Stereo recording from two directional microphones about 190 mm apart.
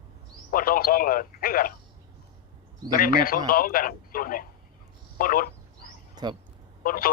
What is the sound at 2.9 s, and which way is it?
Speech, 50° left (ahead or behind).